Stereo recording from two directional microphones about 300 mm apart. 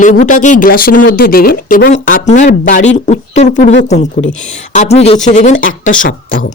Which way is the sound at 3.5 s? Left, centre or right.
Left.